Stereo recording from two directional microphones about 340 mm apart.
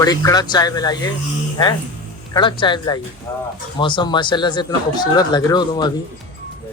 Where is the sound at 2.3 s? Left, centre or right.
Centre.